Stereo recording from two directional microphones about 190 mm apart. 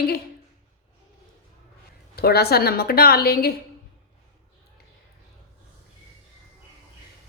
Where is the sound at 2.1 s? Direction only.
55° left (ahead or behind).